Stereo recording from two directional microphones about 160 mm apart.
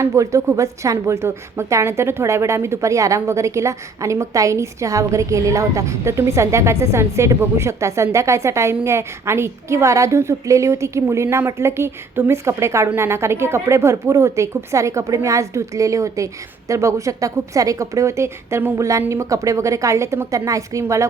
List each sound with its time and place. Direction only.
0.0 s a woman's voice: 20° right (ahead or behind)